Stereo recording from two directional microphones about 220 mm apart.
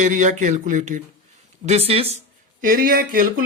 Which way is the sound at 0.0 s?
35° right (ahead or behind).